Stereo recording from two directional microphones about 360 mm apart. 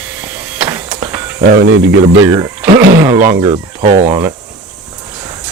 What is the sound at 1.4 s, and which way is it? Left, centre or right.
Speech, right.